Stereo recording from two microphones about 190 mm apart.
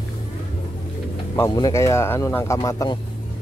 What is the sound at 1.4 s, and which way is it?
Speech, 15° left (ahead or behind).